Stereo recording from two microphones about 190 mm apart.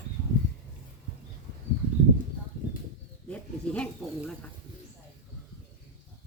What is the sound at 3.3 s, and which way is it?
Snake, 5° left (ahead or behind).